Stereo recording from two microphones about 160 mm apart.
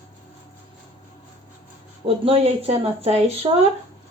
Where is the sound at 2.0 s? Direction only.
40° right (ahead or behind).